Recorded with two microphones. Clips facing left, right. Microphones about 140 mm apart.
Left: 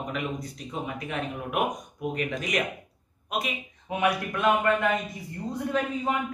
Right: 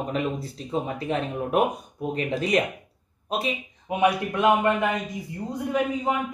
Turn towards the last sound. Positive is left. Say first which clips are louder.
# right 3 dB
turn(degrees=-10)  # may be behind; listen again after turning